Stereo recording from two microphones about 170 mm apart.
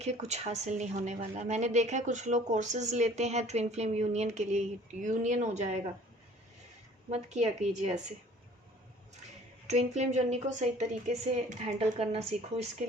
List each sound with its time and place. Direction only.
0.0 s a woman's voice: 40° right (ahead or behind)
7.1 s a woman's voice: 40° right (ahead or behind)
9.6 s a woman's voice: 40° right (ahead or behind)